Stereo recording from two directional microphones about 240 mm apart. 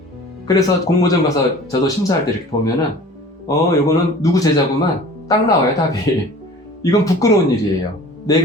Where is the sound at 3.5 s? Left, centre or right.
Centre.